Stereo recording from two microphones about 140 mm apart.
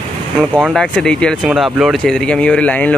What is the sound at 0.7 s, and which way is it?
Speech, 5° left (ahead or behind).